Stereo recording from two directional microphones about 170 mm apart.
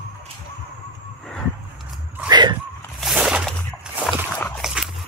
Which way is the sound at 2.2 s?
25° right (ahead or behind).